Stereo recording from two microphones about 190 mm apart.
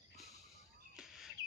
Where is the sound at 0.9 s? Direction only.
Centre (ahead or behind).